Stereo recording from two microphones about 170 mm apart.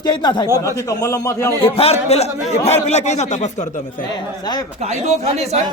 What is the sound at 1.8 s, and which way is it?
A man's voice, 35° left (ahead or behind).